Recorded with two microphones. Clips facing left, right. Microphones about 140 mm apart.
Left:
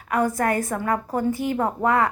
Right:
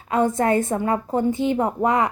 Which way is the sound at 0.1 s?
25° right (ahead or behind).